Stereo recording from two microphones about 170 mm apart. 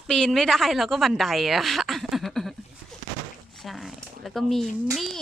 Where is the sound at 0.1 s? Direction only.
Centre (ahead or behind).